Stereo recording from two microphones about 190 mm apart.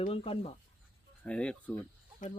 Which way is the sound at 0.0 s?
30° left (ahead or behind).